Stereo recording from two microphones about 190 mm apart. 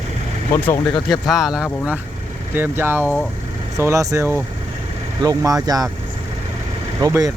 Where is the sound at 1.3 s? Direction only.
Centre (ahead or behind); by 5.8 s 20° right (ahead or behind).